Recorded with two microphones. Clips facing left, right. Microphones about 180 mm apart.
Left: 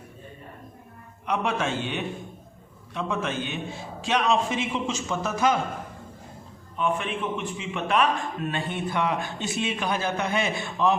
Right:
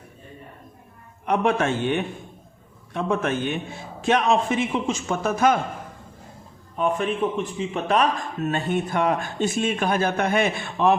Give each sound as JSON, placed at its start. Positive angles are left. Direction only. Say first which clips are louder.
{"t": 1.2, "sound": "a man's voice", "louder": "right 5 dB", "side_deg": -50}
{"t": 6.7, "sound": "a man's voice", "louder": "right 4 dB", "side_deg": -40}